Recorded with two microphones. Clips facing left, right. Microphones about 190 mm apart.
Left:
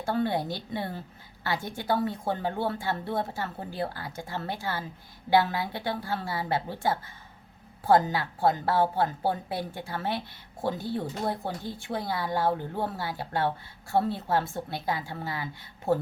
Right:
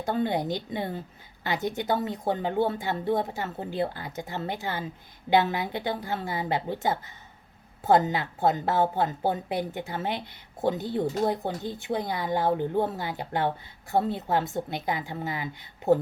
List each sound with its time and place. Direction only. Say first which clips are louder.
0.0 s speech: right 1 dB; 20° right (ahead or behind)